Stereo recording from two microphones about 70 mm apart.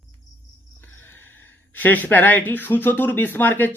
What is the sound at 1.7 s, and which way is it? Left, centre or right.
Speech, left.